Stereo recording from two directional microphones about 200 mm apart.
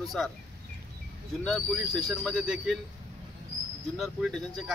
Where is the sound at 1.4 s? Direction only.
Centre (ahead or behind).